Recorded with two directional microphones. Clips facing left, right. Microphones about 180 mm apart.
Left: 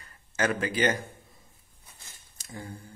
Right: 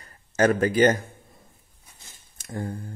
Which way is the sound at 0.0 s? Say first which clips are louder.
Right 8 dB; 40° right (ahead or behind).